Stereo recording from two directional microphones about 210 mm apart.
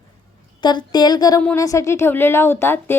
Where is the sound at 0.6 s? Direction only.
20° left (ahead or behind).